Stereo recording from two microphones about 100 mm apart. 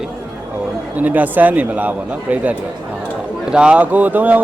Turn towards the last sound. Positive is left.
turn(degrees=-15)  # may be behind; listen again after turning